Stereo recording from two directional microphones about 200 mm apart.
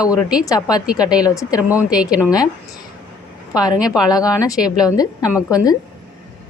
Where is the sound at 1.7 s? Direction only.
5° right (ahead or behind).